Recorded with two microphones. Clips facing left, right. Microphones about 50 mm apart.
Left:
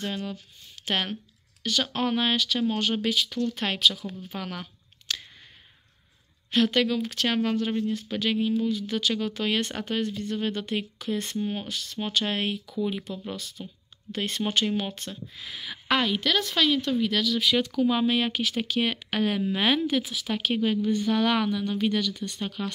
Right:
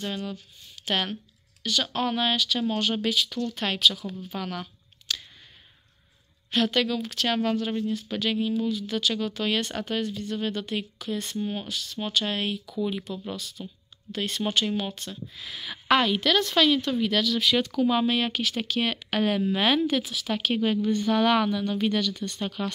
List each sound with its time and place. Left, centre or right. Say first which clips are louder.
0.0 s speech: even; left
1.6 s speech: even; left
5.1 s a sound: even; left
6.5 s speech: left 1 dB; left
11.6 s speech: even; left
12.7 s speech: even; centre
13.4 s speech: right 1 dB; left
14.7 s a woman's voice: even; centre